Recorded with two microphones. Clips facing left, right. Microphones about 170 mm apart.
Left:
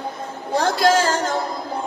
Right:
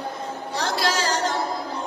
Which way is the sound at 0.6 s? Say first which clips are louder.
Left 8 dB; 50° left (ahead or behind).